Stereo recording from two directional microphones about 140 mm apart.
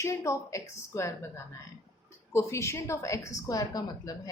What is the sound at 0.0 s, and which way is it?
Speech, 20° left (ahead or behind).